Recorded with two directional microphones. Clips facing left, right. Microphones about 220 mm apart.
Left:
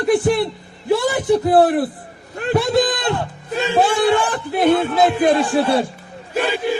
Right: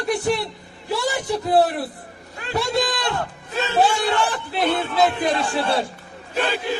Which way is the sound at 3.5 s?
15° left (ahead or behind).